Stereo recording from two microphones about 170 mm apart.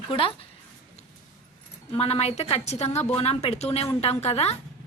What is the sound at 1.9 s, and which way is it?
A woman's voice, 35° left (ahead or behind).